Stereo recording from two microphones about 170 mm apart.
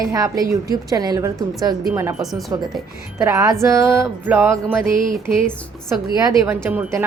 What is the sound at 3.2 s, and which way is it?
A woman's voice, 20° right (ahead or behind).